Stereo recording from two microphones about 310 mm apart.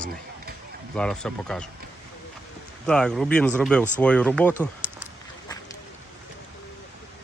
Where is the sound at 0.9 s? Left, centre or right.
Centre.